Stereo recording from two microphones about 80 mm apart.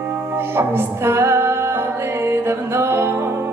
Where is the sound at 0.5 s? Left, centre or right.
Right.